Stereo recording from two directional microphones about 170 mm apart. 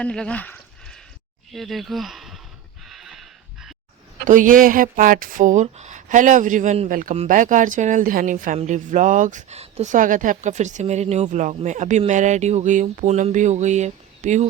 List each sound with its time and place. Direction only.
0.0 s a sound: 5° left (ahead or behind)
1.5 s speech: centre (ahead or behind)
2.9 s horse: centre (ahead or behind)
4.3 s speech: 50° right (ahead or behind)